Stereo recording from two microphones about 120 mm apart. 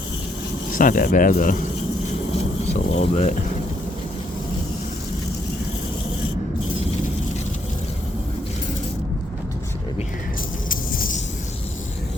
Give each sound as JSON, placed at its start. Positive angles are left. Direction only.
{"t": 0.8, "sound": "speech", "side_deg": 90}
{"t": 2.9, "sound": "speech", "side_deg": 65}